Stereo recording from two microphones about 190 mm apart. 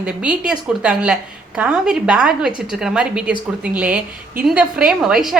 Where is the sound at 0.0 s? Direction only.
5° right (ahead or behind).